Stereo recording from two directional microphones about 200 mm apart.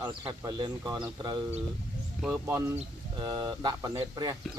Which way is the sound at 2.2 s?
Centre (ahead or behind).